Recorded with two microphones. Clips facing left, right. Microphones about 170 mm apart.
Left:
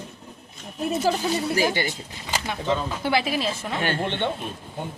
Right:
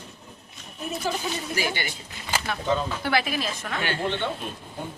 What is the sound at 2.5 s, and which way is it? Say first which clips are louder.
A woman's voice: even; 20° left (ahead or behind).